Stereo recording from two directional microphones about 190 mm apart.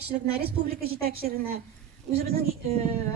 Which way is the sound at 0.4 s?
50° right (ahead or behind).